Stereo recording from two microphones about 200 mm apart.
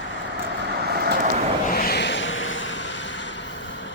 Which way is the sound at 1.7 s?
50° left (ahead or behind).